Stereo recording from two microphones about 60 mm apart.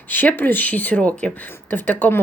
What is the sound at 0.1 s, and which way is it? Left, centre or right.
Speech, left.